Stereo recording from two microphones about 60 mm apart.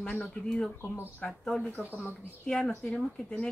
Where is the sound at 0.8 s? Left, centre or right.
Left.